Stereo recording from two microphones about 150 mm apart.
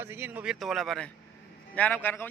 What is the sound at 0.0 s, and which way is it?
Speech, 15° right (ahead or behind).